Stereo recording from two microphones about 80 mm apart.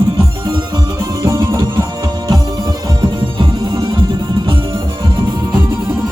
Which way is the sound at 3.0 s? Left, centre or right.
Right.